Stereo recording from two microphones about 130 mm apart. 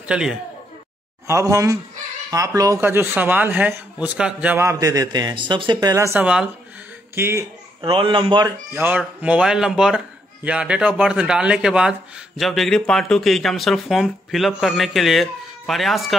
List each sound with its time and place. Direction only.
0.0 s speech: 5° right (ahead or behind)
1.2 s a man's voice: 25° right (ahead or behind)
4.6 s speech: 25° right (ahead or behind)
6.2 s a man's voice: 5° right (ahead or behind)
7.2 s speech: 20° right (ahead or behind)
7.8 s speech: 40° right (ahead or behind)
8.8 s a man's voice: 10° right (ahead or behind)